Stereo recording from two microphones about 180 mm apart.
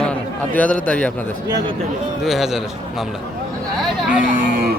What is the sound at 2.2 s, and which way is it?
Speech, centre (ahead or behind).